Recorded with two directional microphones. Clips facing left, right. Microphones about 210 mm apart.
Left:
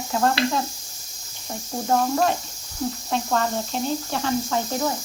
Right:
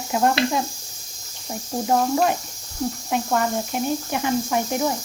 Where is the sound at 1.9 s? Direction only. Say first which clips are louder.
Right 1 dB; 10° right (ahead or behind).